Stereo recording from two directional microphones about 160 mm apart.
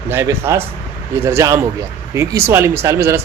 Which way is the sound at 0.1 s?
15° right (ahead or behind).